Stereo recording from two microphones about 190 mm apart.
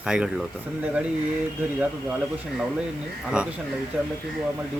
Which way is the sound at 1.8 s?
5° right (ahead or behind).